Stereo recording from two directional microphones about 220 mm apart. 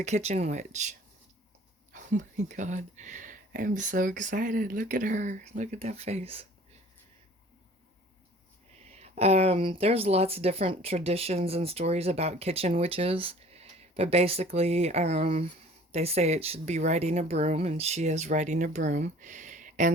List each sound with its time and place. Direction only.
0.0 s speech: 30° right (ahead or behind)
9.0 s speech: 30° right (ahead or behind)